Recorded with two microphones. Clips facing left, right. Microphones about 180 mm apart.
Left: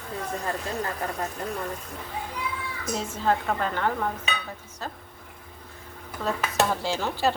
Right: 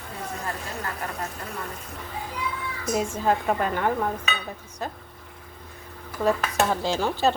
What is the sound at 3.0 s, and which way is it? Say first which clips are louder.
Speech: right 2 dB; 15° right (ahead or behind).